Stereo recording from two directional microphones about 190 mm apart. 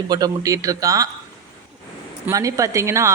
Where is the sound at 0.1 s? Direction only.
20° right (ahead or behind).